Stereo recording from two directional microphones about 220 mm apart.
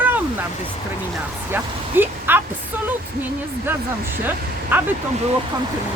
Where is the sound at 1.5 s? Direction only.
10° right (ahead or behind).